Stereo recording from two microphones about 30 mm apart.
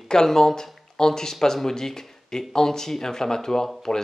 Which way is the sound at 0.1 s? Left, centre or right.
Centre.